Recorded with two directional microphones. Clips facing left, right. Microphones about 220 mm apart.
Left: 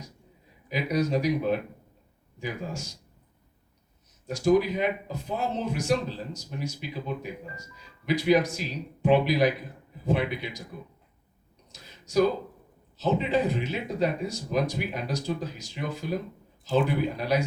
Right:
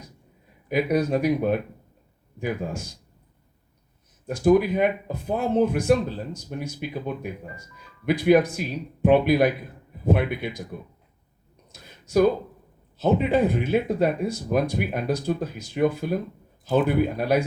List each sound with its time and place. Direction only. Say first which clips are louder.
0.7 s speech: right 4 dB; 55° right (ahead or behind)
4.3 s speech: right 4 dB; 55° right (ahead or behind)
11.7 s a sound: right 4 dB; 55° right (ahead or behind)
13.0 s speech: right 5 dB; 55° right (ahead or behind)